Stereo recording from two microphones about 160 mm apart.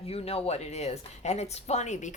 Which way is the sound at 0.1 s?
40° left (ahead or behind).